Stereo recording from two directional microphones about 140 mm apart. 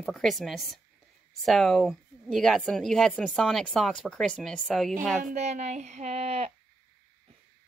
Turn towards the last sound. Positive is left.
turn(degrees=-50)  # may be behind; listen again after turning